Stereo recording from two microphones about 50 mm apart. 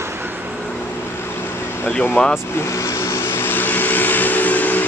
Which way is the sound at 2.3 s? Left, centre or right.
Left.